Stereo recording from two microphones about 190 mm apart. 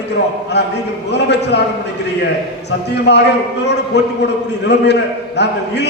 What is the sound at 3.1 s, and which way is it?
A man's voice, 65° left (ahead or behind).